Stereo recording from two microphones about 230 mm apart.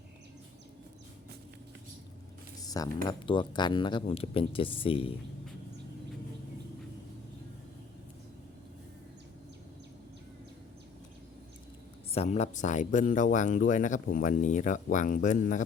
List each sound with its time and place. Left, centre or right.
2.6 s speech: centre
12.1 s speech: left